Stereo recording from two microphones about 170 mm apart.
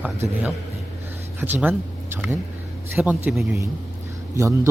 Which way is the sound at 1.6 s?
10° right (ahead or behind).